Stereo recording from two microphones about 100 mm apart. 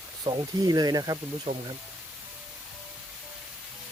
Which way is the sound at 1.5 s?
60° right (ahead or behind).